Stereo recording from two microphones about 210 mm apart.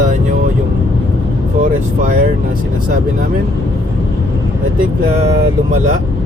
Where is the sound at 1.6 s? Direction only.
40° right (ahead or behind).